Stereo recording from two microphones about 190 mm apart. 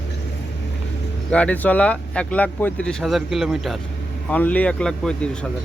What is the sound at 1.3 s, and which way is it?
Speech, 5° left (ahead or behind).